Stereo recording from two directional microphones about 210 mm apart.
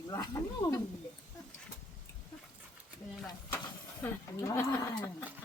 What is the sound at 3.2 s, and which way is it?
Speech, 10° left (ahead or behind).